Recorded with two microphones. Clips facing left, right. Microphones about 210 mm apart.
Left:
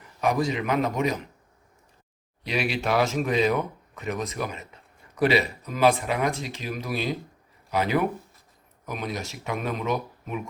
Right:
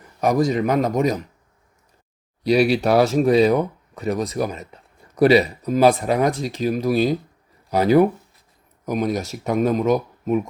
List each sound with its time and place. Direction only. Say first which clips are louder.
0.2 s speech: right 6 dB; 40° right (ahead or behind)
2.4 s speech: right 11 dB; 40° right (ahead or behind)